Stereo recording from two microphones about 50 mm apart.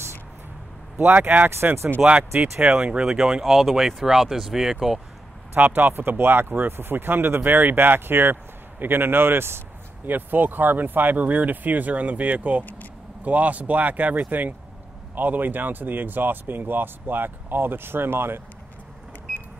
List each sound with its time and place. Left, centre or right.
0.9 s speech: right
2.0 s speech: centre
2.6 s speech: right
3.1 s speech: centre
5.6 s speech: right
10.0 s speech: right